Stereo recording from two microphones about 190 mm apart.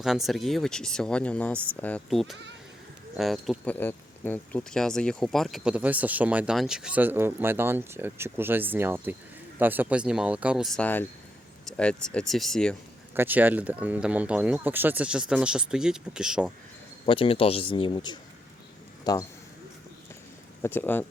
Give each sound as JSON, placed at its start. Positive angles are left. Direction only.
{"t": 0.0, "sound": "speech", "side_deg": 0}
{"t": 13.1, "sound": "speech", "side_deg": -10}
{"t": 17.1, "sound": "speech", "side_deg": 30}
{"t": 20.6, "sound": "speech", "side_deg": 10}